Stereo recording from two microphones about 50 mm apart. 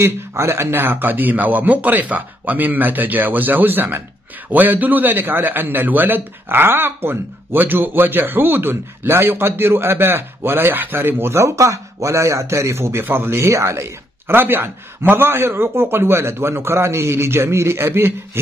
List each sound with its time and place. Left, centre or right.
0.0 s a man's voice: right
11.3 s speech: right
14.3 s a man's voice: right